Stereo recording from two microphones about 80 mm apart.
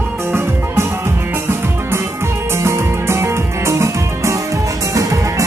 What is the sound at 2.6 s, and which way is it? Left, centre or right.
Music, right.